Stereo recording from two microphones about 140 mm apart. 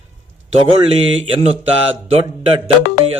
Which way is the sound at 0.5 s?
45° right (ahead or behind).